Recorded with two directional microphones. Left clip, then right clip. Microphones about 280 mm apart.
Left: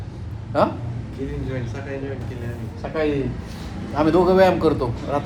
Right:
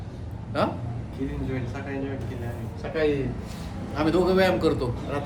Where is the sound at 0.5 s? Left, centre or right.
Centre.